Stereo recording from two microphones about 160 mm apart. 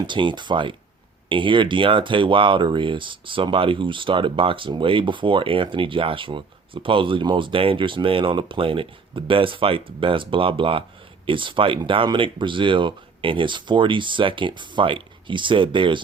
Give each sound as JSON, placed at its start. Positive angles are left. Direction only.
{"t": 0.1, "sound": "speech", "side_deg": -30}